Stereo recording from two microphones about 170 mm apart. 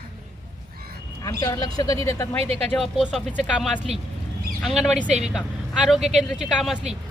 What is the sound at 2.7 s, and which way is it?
Speech, centre (ahead or behind).